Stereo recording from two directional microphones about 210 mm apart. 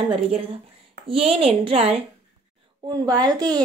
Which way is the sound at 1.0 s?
25° right (ahead or behind).